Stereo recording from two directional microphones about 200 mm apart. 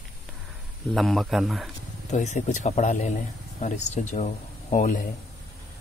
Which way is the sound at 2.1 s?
35° left (ahead or behind).